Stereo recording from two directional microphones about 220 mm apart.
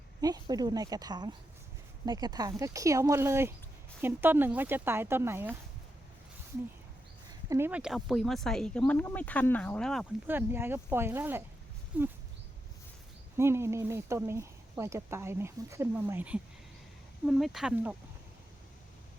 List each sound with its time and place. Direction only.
0.2 s speech: 15° right (ahead or behind)
7.5 s speech: 10° right (ahead or behind)
10.2 s speech: 10° right (ahead or behind)
13.3 s speech: 10° right (ahead or behind)